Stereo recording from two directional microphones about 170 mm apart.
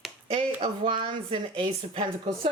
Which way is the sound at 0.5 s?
30° right (ahead or behind).